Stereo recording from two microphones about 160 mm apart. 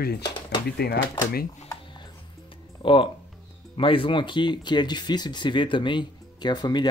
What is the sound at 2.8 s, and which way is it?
Speech, 30° left (ahead or behind).